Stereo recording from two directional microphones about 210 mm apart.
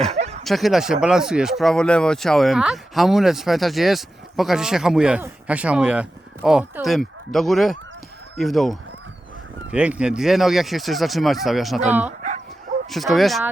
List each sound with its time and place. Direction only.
0.1 s bow-wow: 30° right (ahead or behind)
0.4 s speech: centre (ahead or behind)